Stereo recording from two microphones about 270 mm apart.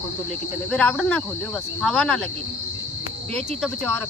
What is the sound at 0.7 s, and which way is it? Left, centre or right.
Speech, centre.